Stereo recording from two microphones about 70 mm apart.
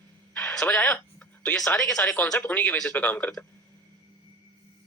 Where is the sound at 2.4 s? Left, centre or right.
Left.